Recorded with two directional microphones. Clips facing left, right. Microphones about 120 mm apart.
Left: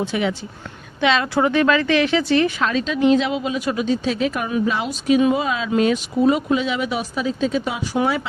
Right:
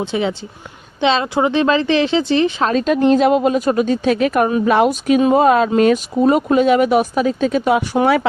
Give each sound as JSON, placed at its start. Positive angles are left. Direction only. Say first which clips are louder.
{"t": 0.0, "sound": "speech", "louder": "right 2 dB", "side_deg": -25}
{"t": 2.6, "sound": "speech", "louder": "right 4 dB", "side_deg": -50}
{"t": 4.6, "sound": "speech", "louder": "right 8 dB", "side_deg": -60}